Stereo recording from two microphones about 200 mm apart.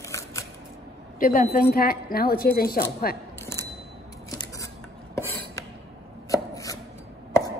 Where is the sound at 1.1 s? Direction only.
45° left (ahead or behind).